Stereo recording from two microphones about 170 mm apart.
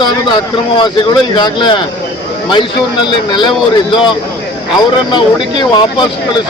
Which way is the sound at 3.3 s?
25° left (ahead or behind).